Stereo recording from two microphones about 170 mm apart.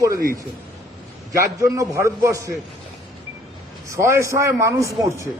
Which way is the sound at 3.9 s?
15° right (ahead or behind).